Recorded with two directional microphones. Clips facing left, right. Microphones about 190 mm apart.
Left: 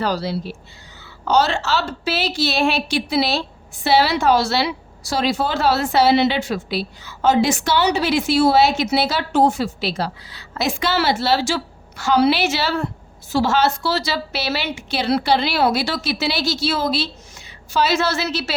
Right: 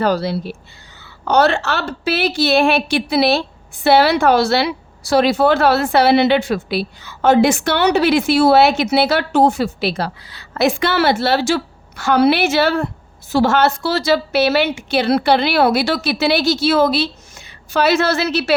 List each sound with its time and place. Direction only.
0.0 s a woman's voice: 55° right (ahead or behind)